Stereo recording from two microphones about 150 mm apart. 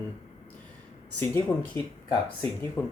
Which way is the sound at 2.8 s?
25° left (ahead or behind).